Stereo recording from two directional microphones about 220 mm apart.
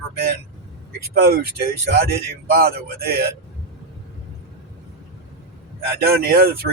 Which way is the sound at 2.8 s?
45° right (ahead or behind).